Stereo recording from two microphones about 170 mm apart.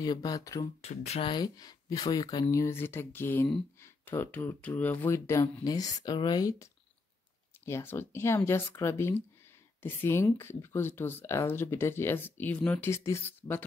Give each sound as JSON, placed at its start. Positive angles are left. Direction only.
{"t": 0.0, "sound": "speech", "side_deg": 25}
{"t": 0.8, "sound": "speech", "side_deg": 35}
{"t": 1.3, "sound": "speech", "side_deg": 25}